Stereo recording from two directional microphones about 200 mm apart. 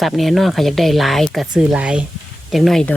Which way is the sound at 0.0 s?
Centre (ahead or behind).